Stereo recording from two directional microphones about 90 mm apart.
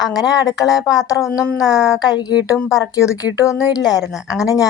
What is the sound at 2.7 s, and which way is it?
A woman's voice, 40° left (ahead or behind).